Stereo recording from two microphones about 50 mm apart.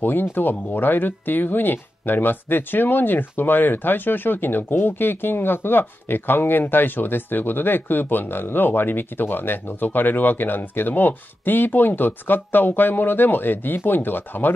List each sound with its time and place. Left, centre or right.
0.0 s speech: left